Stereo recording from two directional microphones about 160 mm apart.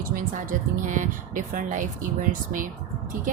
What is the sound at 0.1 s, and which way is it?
A woman's voice, 55° right (ahead or behind).